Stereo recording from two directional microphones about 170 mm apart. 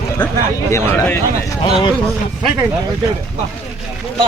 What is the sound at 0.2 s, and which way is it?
Speech, 25° left (ahead or behind).